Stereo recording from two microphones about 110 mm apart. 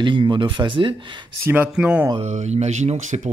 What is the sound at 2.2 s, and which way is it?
Speech, 90° right.